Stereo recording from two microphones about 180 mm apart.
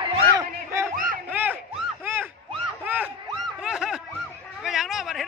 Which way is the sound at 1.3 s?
10° right (ahead or behind).